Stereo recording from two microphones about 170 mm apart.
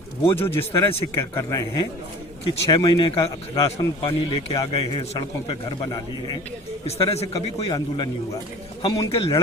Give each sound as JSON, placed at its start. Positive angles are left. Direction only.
{"t": 0.3, "sound": "a man's voice", "side_deg": 15}
{"t": 9.1, "sound": "a man's voice", "side_deg": 35}